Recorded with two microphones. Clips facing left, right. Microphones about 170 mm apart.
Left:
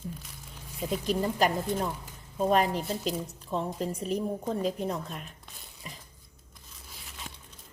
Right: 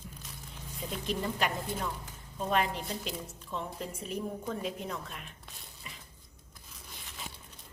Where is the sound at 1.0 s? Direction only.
40° left (ahead or behind).